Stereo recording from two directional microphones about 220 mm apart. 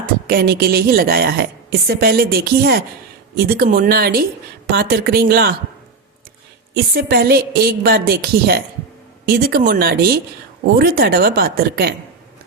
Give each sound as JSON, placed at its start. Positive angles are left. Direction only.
{"t": 0.0, "sound": "a woman's voice", "side_deg": -40}
{"t": 6.7, "sound": "a woman's voice", "side_deg": -45}